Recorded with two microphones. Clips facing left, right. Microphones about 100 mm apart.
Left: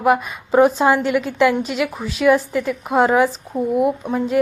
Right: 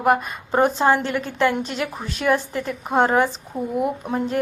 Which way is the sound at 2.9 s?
Centre (ahead or behind).